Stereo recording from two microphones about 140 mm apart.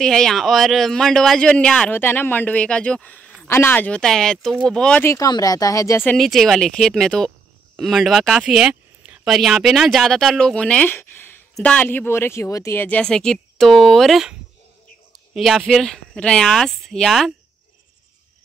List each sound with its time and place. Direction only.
0.0 s a man's voice: 5° left (ahead or behind)
5.0 s speech: 25° left (ahead or behind)
6.0 s a man's voice: centre (ahead or behind)
15.3 s speech: centre (ahead or behind)